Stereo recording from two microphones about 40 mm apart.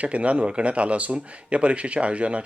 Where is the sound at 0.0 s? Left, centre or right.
Right.